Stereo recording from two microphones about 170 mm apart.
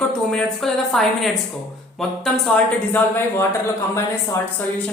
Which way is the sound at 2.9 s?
15° left (ahead or behind).